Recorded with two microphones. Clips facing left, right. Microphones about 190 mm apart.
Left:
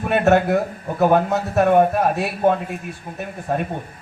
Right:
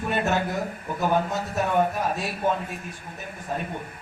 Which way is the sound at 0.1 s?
65° left (ahead or behind).